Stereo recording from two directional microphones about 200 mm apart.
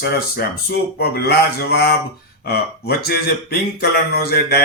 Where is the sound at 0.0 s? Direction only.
50° left (ahead or behind).